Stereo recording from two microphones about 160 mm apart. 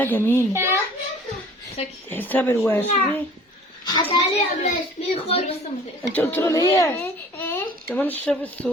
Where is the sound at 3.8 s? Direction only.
30° left (ahead or behind).